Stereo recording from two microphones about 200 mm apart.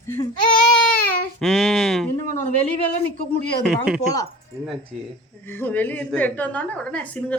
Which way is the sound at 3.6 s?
Centre (ahead or behind).